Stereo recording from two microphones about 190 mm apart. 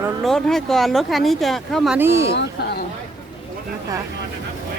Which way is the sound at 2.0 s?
15° right (ahead or behind).